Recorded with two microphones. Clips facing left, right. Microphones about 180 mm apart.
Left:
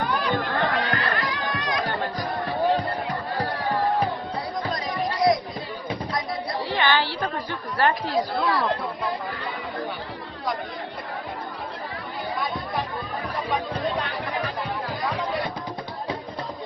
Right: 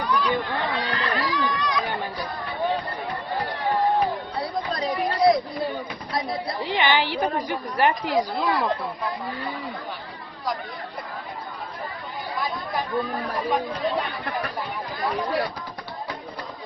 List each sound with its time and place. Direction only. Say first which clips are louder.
0.0 s neigh: right 1 dB; 55° left (ahead or behind)
4.7 s music: right 3 dB; 30° right (ahead or behind)
6.1 s chatter: right 5 dB; 15° right (ahead or behind)
7.5 s speech: left 2 dB; 15° right (ahead or behind)